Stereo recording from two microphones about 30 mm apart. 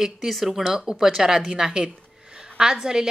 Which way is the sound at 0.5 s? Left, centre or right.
Centre.